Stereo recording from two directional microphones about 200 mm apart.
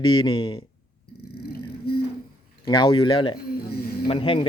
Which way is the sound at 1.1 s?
50° left (ahead or behind).